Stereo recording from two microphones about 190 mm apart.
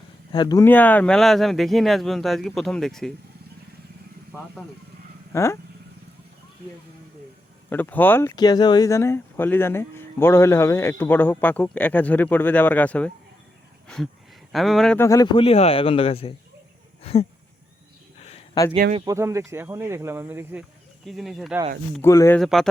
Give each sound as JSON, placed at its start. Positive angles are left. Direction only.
{"t": 0.3, "sound": "speech", "side_deg": 20}
{"t": 4.3, "sound": "speech", "side_deg": 15}
{"t": 7.7, "sound": "speech", "side_deg": 10}
{"t": 8.4, "sound": "speech", "side_deg": 20}
{"t": 13.8, "sound": "a sound", "side_deg": 5}
{"t": 14.5, "sound": "speech", "side_deg": 0}
{"t": 14.9, "sound": "speech", "side_deg": 15}
{"t": 17.0, "sound": "a sound", "side_deg": 30}
{"t": 18.9, "sound": "speech", "side_deg": -15}
{"t": 21.0, "sound": "speech", "side_deg": 0}
{"t": 22.0, "sound": "speech", "side_deg": 15}
{"t": 22.4, "sound": "speech", "side_deg": 0}